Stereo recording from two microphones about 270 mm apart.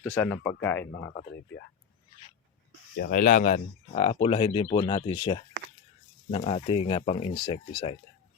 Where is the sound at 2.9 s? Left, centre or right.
Left.